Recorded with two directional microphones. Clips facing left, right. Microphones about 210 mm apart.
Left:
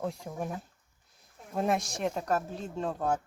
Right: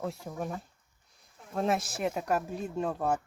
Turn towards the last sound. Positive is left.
turn(degrees=-5)  # may be behind; listen again after turning